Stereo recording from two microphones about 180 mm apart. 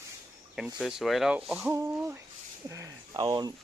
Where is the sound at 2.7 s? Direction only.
20° right (ahead or behind).